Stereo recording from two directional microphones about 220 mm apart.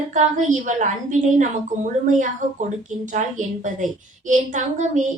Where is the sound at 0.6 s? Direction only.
35° right (ahead or behind).